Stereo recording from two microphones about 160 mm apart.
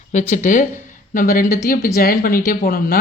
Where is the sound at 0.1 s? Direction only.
45° left (ahead or behind).